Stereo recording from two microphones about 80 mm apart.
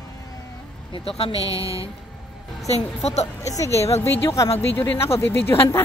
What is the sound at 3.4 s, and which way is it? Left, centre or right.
Speech, left.